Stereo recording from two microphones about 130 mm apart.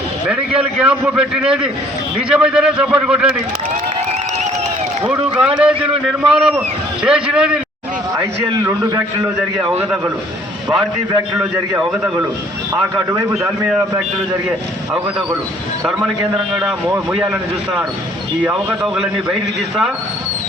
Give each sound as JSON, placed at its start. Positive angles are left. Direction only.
{"t": 0.3, "sound": "a man's voice", "side_deg": -5}
{"t": 5.0, "sound": "a man's voice", "side_deg": -10}
{"t": 8.6, "sound": "a man's voice", "side_deg": -25}
{"t": 9.7, "sound": "a man's voice", "side_deg": -10}
{"t": 11.8, "sound": "a man's voice", "side_deg": -5}
{"t": 13.3, "sound": "a man's voice", "side_deg": -5}
{"t": 18.4, "sound": "a man's voice", "side_deg": -5}